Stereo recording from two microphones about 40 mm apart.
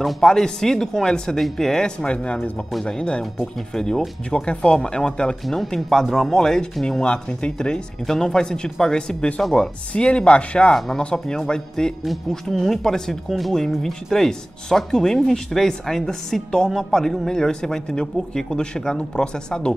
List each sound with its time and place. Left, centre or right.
0.2 s speech: centre
2.0 s speech: left
4.3 s speech: left
5.5 s speech: centre
7.0 s speech: left
10.7 s speech: centre
11.0 s speech: left